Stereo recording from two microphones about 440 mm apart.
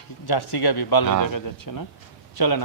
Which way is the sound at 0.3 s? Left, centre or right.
Left.